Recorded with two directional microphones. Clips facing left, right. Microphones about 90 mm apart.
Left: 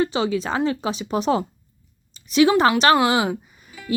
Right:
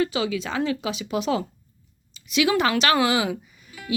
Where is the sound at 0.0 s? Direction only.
35° left (ahead or behind).